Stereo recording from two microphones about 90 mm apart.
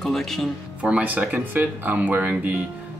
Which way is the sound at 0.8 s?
15° right (ahead or behind).